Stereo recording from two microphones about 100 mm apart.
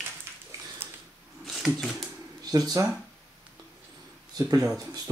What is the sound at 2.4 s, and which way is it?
Speech, 40° right (ahead or behind).